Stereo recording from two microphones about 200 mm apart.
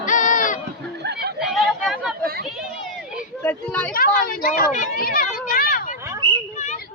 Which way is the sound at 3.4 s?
5° left (ahead or behind).